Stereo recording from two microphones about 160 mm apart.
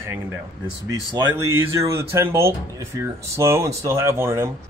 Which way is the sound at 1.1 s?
25° right (ahead or behind).